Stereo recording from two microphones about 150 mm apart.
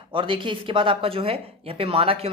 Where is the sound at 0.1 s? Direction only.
35° right (ahead or behind).